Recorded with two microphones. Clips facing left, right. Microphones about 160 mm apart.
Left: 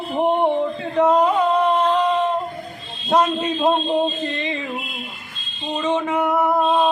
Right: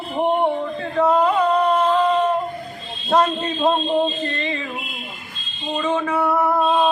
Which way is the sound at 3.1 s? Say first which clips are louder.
Even; 10° left (ahead or behind).